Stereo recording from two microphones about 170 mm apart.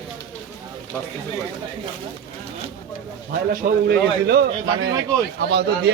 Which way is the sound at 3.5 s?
60° right (ahead or behind).